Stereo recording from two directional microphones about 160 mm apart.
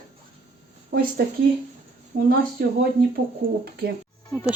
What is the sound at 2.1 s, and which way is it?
Speech, 55° right (ahead or behind).